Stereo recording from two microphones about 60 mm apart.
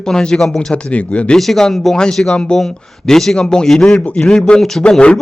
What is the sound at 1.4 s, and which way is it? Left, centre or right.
A man's voice, centre.